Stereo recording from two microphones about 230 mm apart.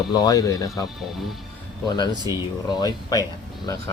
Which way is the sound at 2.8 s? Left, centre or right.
Centre.